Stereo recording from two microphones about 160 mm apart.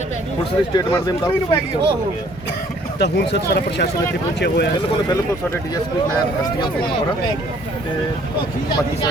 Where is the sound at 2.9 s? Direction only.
90° left.